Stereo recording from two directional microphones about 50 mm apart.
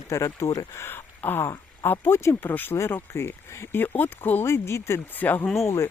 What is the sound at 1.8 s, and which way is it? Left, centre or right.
Speech, left.